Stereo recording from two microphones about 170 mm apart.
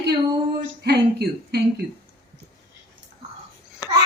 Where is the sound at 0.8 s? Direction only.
75° right (ahead or behind).